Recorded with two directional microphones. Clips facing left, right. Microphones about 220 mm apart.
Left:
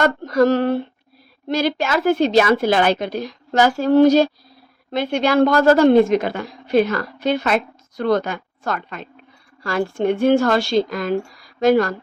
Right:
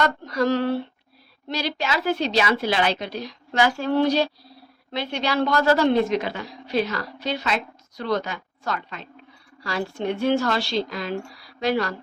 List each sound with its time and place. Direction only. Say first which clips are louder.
0.0 s a woman's voice: left 7 dB; 45° left (ahead or behind)